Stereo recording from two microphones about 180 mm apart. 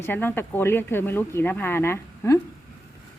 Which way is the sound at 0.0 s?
10° left (ahead or behind).